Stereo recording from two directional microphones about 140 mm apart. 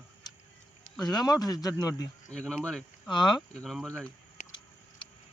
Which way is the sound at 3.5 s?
5° left (ahead or behind).